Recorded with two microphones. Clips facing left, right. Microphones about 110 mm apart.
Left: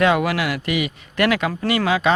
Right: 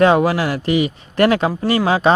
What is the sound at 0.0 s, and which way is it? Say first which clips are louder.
Speech: right 5 dB; 30° right (ahead or behind).